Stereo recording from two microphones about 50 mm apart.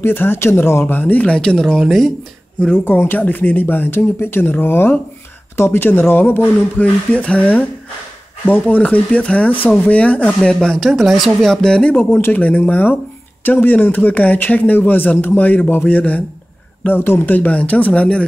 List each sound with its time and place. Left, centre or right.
0.0 s speech: left
0.9 s speech: left
1.3 s speech: centre
1.8 s speech: centre
2.8 s speech: left
6.8 s speech: left
10.5 s speech: centre
10.9 s speech: centre
12.3 s speech: left
16.8 s speech: left
17.3 s speech: left